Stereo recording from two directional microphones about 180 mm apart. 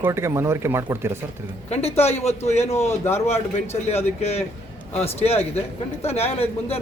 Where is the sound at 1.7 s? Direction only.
35° left (ahead or behind).